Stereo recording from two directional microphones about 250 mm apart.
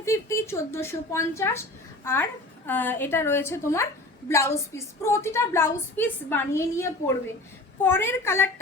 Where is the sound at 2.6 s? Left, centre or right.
Centre.